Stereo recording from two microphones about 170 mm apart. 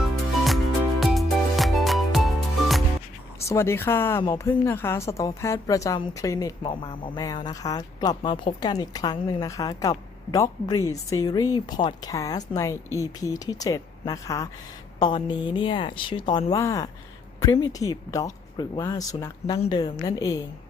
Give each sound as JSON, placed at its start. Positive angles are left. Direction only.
{"t": 0.0, "sound": "music", "side_deg": 0}
{"t": 3.4, "sound": "a woman's voice", "side_deg": 15}